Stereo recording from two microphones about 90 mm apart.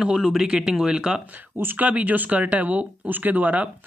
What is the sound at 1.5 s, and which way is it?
Speech, 20° right (ahead or behind).